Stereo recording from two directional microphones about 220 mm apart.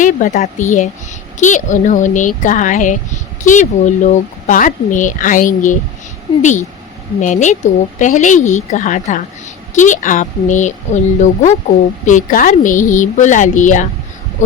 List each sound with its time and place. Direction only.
0.0 s speech: 35° left (ahead or behind)